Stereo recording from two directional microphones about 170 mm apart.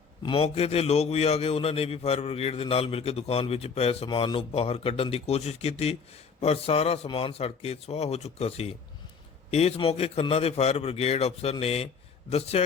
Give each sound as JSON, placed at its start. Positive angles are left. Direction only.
{"t": 0.2, "sound": "a man's voice", "side_deg": 30}